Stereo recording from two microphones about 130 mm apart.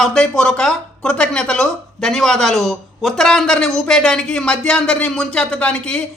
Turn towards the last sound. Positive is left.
turn(degrees=5)  # may be behind; listen again after turning